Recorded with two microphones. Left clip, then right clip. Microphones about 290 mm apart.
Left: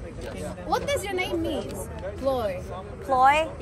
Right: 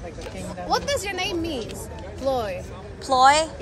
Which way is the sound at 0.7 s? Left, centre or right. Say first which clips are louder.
Right 2 dB; right.